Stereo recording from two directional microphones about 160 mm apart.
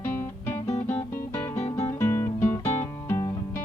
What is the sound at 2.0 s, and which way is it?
Music, 15° left (ahead or behind).